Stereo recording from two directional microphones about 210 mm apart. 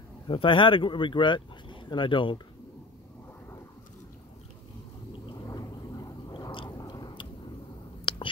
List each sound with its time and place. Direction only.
0.3 s speech: 25° left (ahead or behind)
5.2 s a sound: 20° left (ahead or behind)
8.0 s whispering: 25° left (ahead or behind)